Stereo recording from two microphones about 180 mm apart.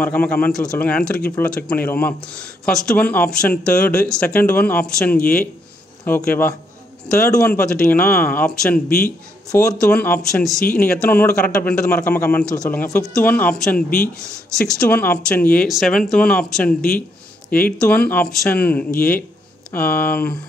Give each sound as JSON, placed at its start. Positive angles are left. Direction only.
{"t": 0.0, "sound": "speech", "side_deg": 10}
{"t": 17.7, "sound": "speech", "side_deg": 5}